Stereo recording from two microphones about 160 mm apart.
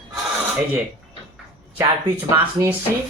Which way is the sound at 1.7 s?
15° right (ahead or behind).